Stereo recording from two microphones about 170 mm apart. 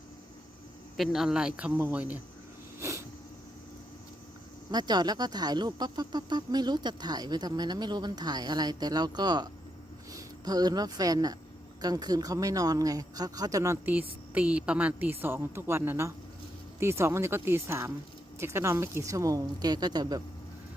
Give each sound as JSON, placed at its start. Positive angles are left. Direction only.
{"t": 0.9, "sound": "speech", "side_deg": 0}
{"t": 4.7, "sound": "a woman's voice", "side_deg": -25}